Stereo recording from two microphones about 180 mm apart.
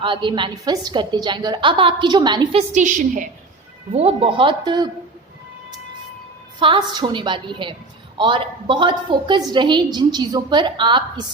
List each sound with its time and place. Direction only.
0.0 s a woman's voice: 25° right (ahead or behind); by 3.2 s 45° right (ahead or behind)
3.9 s a woman's voice: 35° right (ahead or behind)
6.6 s a woman's voice: 25° right (ahead or behind)